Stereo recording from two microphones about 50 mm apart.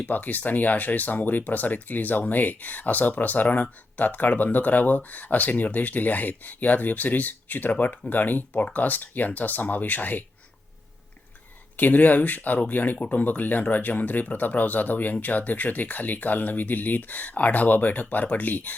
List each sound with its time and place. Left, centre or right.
0.0 s speech: left
11.8 s speech: left